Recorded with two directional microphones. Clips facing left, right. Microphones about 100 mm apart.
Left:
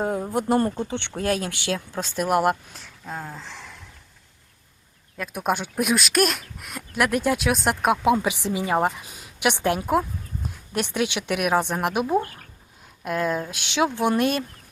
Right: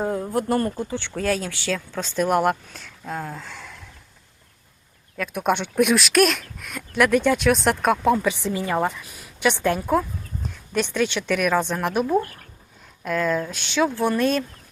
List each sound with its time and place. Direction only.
0.0 s speech: 20° left (ahead or behind); by 3.8 s centre (ahead or behind)
5.2 s speech: centre (ahead or behind); by 9.5 s 20° left (ahead or behind)
9.6 s a sound: 15° left (ahead or behind)
10.8 s speech: 15° left (ahead or behind)